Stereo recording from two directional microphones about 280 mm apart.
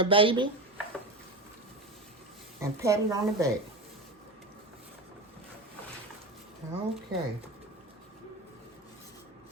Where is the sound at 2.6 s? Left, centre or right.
Centre.